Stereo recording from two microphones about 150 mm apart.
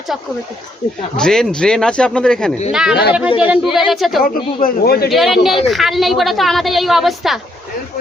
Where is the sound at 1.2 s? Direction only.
5° left (ahead or behind).